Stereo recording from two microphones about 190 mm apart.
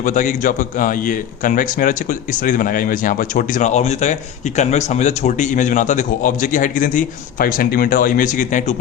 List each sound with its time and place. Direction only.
0.0 s a man's voice: 40° left (ahead or behind)